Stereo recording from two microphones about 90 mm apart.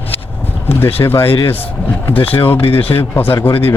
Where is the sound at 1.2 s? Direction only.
90° left.